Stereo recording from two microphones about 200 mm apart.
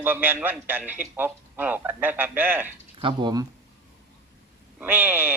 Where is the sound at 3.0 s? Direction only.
20° right (ahead or behind).